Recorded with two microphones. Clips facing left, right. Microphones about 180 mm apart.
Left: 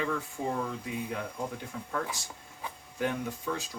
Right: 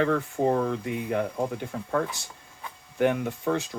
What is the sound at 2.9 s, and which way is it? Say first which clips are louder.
Speech: right 8 dB; 65° right (ahead or behind).